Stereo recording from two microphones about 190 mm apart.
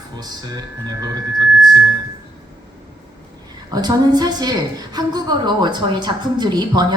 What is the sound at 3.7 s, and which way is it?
A woman's voice, 20° right (ahead or behind).